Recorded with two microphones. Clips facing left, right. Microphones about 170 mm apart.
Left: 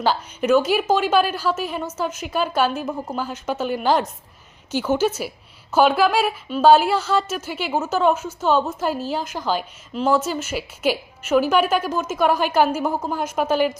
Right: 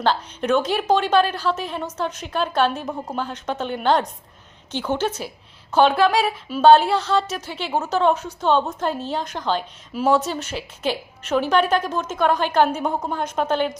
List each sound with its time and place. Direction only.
0.0 s a woman's voice: 5° left (ahead or behind)
9.9 s a woman's voice: centre (ahead or behind)